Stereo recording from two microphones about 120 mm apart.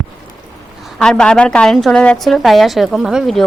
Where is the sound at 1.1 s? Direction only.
10° left (ahead or behind).